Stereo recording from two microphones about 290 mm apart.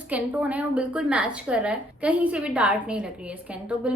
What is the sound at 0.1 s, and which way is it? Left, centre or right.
A woman's voice, centre.